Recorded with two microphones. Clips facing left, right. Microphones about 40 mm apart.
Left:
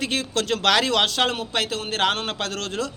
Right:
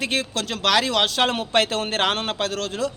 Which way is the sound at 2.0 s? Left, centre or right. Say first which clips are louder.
Left 2 dB; centre.